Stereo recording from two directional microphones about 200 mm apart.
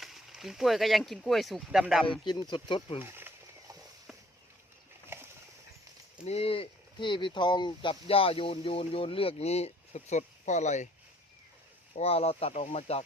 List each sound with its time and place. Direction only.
0.0 s speech: centre (ahead or behind)
2.2 s speech: 20° left (ahead or behind)
3.0 s snake: 10° right (ahead or behind)
5.0 s a sound: 10° right (ahead or behind)
6.2 s speech: 30° left (ahead or behind)
11.9 s speech: 30° left (ahead or behind)